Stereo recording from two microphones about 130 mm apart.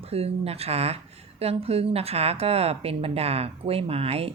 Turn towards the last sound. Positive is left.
turn(degrees=-50)  # may be behind; listen again after turning